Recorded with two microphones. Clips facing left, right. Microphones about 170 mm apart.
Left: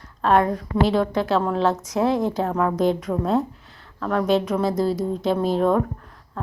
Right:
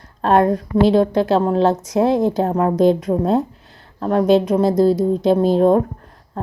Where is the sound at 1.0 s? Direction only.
35° right (ahead or behind).